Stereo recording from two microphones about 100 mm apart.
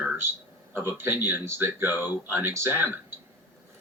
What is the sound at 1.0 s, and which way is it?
Speech, 20° right (ahead or behind).